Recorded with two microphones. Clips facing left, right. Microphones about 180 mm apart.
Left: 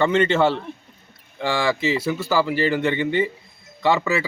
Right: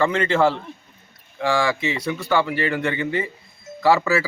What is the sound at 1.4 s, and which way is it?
Speech, centre (ahead or behind).